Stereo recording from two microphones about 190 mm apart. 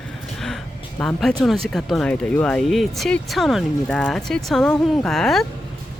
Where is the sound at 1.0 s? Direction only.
5° left (ahead or behind).